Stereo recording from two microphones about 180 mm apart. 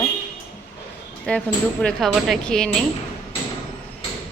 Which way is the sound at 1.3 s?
5° left (ahead or behind).